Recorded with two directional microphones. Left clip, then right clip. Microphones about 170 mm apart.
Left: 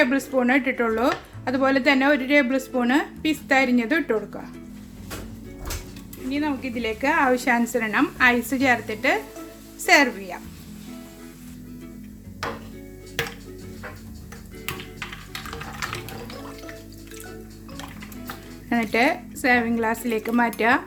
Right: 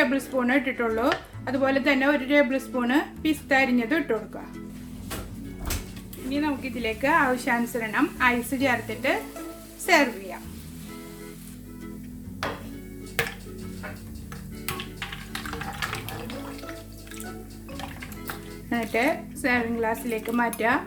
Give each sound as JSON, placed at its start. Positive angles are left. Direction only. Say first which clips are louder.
{"t": 0.0, "sound": "speech", "louder": "left 3 dB", "side_deg": 35}
{"t": 6.3, "sound": "speech", "louder": "left 1 dB", "side_deg": 35}
{"t": 12.4, "sound": "music", "louder": "left 1 dB", "side_deg": -5}
{"t": 18.7, "sound": "speech", "louder": "left 4 dB", "side_deg": 40}